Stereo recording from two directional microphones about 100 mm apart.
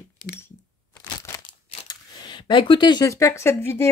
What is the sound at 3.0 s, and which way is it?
Speech, 30° left (ahead or behind).